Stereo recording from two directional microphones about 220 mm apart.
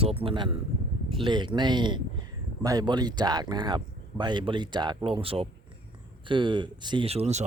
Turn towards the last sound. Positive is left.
turn(degrees=-30)  # may be behind; listen again after turning